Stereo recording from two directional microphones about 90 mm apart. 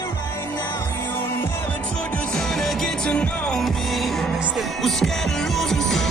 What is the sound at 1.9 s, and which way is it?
Music, 15° left (ahead or behind).